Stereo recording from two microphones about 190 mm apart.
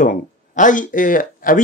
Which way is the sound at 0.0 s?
40° left (ahead or behind).